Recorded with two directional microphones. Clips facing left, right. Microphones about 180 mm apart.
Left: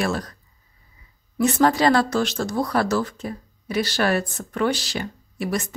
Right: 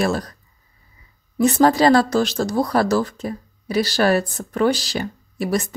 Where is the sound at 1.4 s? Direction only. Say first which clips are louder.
Right 3 dB; 35° right (ahead or behind).